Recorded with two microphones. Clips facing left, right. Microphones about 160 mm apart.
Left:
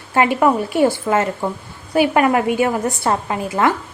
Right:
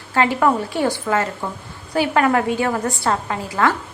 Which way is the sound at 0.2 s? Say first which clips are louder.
Left 2 dB; 20° left (ahead or behind).